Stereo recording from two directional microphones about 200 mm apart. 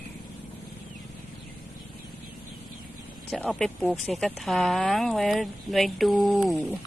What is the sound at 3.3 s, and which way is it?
Speech, centre (ahead or behind).